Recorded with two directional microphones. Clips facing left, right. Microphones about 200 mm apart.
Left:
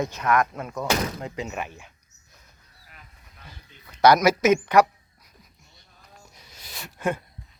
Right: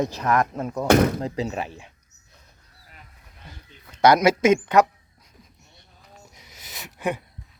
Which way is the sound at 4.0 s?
25° right (ahead or behind).